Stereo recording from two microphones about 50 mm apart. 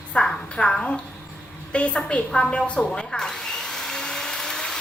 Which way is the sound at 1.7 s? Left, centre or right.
Left.